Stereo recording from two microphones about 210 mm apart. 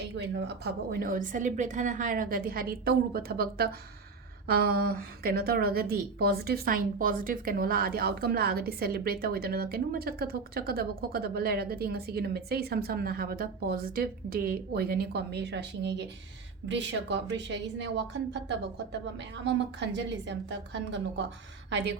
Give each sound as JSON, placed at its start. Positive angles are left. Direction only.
{"t": 0.2, "sound": "a woman's voice", "side_deg": -55}